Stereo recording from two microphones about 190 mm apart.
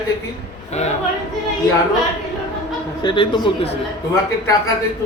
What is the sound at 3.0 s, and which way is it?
Speech, 25° left (ahead or behind).